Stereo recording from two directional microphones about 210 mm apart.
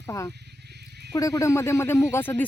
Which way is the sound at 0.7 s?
50° right (ahead or behind).